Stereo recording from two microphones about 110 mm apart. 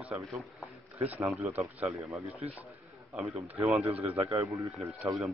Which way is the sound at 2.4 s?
75° right (ahead or behind).